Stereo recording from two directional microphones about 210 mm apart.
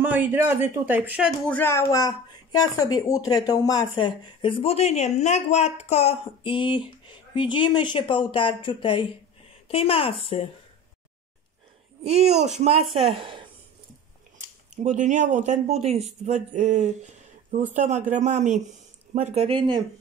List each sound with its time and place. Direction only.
0.0 s speech: 10° right (ahead or behind)
1.5 s speech: 10° left (ahead or behind); by 10.5 s 25° left (ahead or behind)
12.0 s speech: 30° right (ahead or behind)
14.8 s speech: 35° right (ahead or behind)